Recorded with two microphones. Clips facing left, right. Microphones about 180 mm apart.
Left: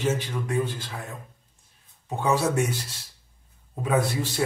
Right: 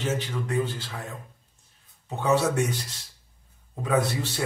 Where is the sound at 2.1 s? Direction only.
10° left (ahead or behind).